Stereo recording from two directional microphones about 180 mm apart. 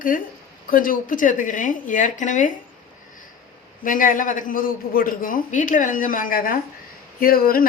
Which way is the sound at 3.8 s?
50° left (ahead or behind).